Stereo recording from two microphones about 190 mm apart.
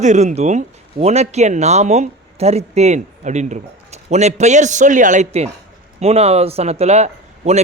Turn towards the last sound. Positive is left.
turn(degrees=-35)  # may be behind; listen again after turning